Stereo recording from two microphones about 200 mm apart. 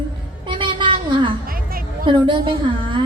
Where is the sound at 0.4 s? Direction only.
25° right (ahead or behind).